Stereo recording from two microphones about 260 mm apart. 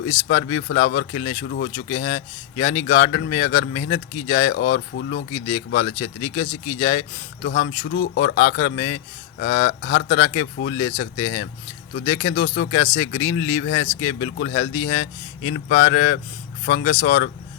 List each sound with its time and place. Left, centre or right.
0.0 s speech: left
4.5 s speech: left
5.3 s speech: left
7.4 s speech: left
13.3 s speech: centre
13.6 s speech: left